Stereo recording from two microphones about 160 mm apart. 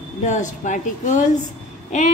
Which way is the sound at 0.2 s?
50° left (ahead or behind).